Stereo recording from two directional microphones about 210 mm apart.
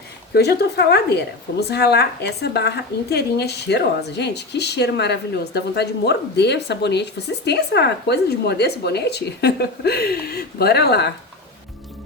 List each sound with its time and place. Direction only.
0.3 s a woman's voice: 50° left (ahead or behind)